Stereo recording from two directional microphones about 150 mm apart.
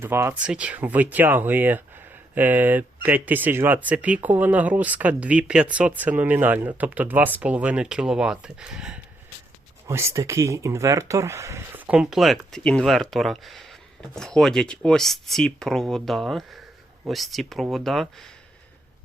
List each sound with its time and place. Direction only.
0.0 s speech: 15° right (ahead or behind)
9.8 s speech: 20° right (ahead or behind); by 18.3 s centre (ahead or behind)